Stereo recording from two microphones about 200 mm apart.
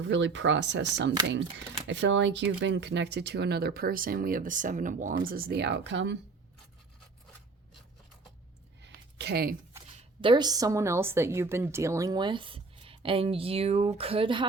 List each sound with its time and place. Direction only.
0.1 s speech: 65° right (ahead or behind)
1.9 s speech: 65° right (ahead or behind)
8.8 s a sound: 55° right (ahead or behind)
9.7 s a woman's voice: 25° right (ahead or behind)